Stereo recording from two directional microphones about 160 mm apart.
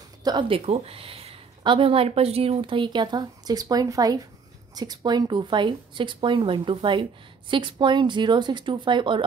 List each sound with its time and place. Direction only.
0.2 s a woman's voice: 30° right (ahead or behind)